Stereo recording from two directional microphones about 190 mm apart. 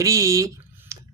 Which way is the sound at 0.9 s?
15° right (ahead or behind).